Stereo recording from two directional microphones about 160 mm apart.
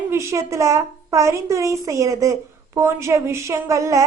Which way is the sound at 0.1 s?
15° right (ahead or behind).